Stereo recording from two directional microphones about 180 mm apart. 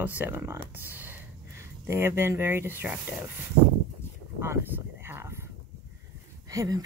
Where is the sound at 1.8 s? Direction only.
15° right (ahead or behind).